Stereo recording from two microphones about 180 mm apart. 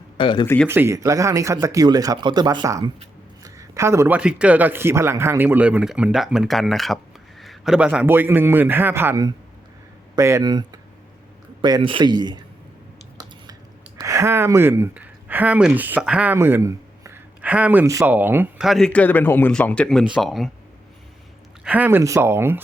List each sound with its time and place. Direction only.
0.2 s speech: 30° left (ahead or behind)
0.4 s speech: 10° left (ahead or behind)
0.7 s speech: 15° right (ahead or behind)
14.0 s speech: 15° right (ahead or behind); by 20.5 s centre (ahead or behind)
21.6 s speech: 10° right (ahead or behind)